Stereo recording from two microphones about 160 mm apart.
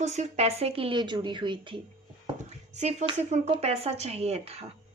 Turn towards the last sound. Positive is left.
turn(degrees=-40)  # may be behind; listen again after turning